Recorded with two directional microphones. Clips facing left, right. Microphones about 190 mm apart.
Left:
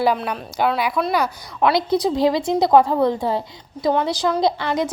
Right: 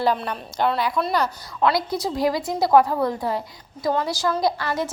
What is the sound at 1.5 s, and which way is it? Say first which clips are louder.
A woman's voice: left 4 dB; 25° left (ahead or behind).